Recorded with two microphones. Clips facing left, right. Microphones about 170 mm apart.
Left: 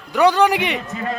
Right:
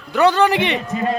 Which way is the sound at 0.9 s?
20° right (ahead or behind).